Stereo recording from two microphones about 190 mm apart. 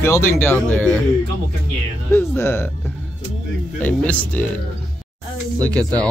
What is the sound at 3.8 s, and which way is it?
Speech, 10° left (ahead or behind).